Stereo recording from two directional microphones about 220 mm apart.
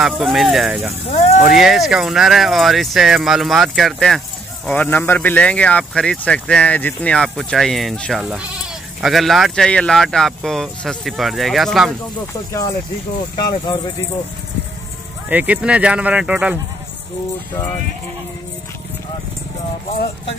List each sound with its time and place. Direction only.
0.0 s speech: centre (ahead or behind)
1.1 s speech: 30° left (ahead or behind)
1.4 s speech: centre (ahead or behind)
13.4 s speech: 20° left (ahead or behind)
15.2 s speech: 5° right (ahead or behind)